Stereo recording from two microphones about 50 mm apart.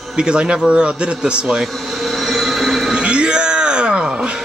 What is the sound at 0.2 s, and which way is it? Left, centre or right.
A man's voice, centre.